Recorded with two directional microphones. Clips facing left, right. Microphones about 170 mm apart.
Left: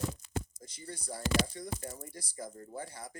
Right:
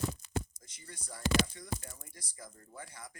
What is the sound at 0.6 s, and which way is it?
Speech, 35° left (ahead or behind).